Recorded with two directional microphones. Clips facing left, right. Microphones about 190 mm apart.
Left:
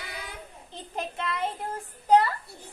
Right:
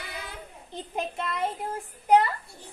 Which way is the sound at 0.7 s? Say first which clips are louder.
Right 2 dB; 10° right (ahead or behind).